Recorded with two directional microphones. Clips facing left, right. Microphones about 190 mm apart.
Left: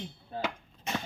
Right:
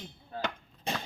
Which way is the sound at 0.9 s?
35° right (ahead or behind).